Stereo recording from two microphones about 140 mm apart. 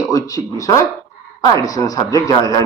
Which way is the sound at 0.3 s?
25° left (ahead or behind).